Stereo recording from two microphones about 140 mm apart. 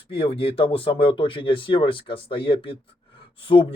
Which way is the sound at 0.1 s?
40° left (ahead or behind).